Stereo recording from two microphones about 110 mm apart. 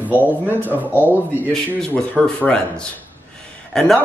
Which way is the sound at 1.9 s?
10° left (ahead or behind).